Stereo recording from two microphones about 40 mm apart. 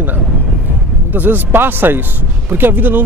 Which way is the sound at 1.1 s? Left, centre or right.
Right.